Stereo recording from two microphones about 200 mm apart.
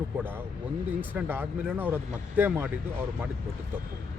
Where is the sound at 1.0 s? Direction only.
10° right (ahead or behind).